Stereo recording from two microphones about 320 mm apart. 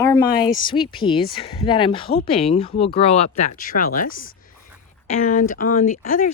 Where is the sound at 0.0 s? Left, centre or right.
Centre.